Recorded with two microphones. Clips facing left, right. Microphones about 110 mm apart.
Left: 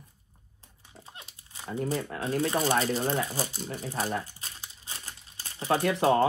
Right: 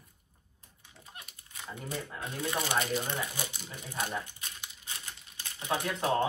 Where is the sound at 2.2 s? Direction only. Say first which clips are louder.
Left 7 dB; 35° left (ahead or behind).